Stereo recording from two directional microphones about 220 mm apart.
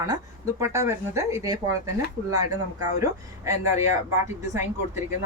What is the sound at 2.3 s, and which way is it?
Speech, 90° right.